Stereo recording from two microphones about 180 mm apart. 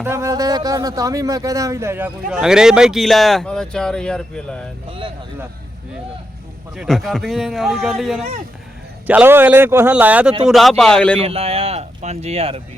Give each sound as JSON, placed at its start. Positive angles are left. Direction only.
{"t": 0.0, "sound": "a man's voice", "side_deg": -15}
{"t": 4.9, "sound": "speech", "side_deg": -30}
{"t": 6.7, "sound": "a man's voice", "side_deg": 0}
{"t": 11.2, "sound": "speech", "side_deg": -35}